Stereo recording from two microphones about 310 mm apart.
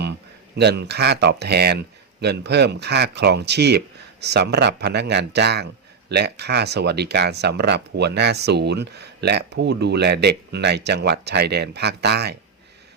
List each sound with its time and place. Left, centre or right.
0.5 s speech: right